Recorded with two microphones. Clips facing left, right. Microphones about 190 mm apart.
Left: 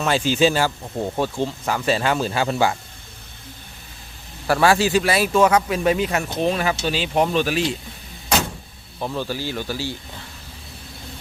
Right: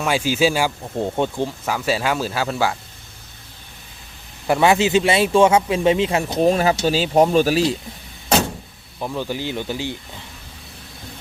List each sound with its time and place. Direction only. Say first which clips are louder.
0.0 s speech: even; 10° right (ahead or behind)
4.4 s speech: right 1 dB; 20° right (ahead or behind)
6.4 s speech: right 6 dB; 40° right (ahead or behind)
9.0 s speech: right 1 dB; 10° right (ahead or behind)